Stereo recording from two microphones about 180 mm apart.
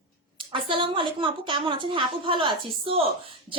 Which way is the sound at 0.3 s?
25° right (ahead or behind).